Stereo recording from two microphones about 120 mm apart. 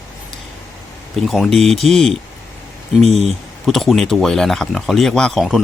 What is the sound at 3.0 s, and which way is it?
Speech, 60° right (ahead or behind).